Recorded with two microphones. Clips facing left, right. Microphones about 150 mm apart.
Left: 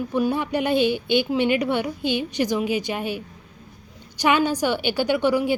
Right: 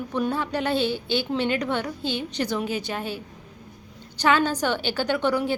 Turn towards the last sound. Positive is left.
turn(degrees=10)  # may be behind; listen again after turning